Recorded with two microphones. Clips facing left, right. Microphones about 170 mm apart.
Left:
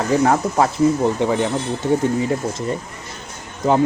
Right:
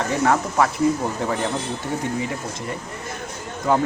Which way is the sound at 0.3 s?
30° left (ahead or behind).